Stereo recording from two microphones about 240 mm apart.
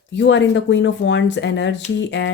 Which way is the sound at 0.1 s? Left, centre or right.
Left.